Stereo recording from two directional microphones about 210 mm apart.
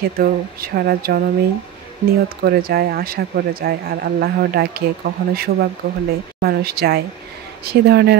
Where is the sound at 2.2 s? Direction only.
45° right (ahead or behind).